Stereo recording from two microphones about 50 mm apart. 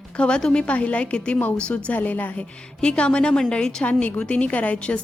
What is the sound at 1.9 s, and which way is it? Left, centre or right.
Speech, left.